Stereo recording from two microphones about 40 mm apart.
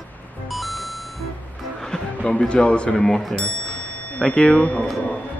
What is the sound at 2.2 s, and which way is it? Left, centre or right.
Speech, left.